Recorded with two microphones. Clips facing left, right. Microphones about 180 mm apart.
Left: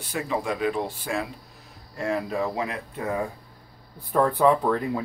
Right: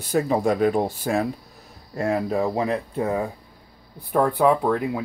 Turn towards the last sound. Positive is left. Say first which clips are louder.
# right 2 dB
turn(degrees=-10)  # may be behind; listen again after turning